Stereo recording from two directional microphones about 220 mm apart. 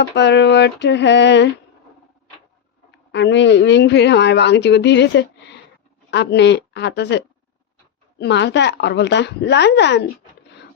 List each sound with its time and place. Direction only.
0.0 s a woman's voice: 50° left (ahead or behind)
3.1 s a woman's voice: 55° left (ahead or behind)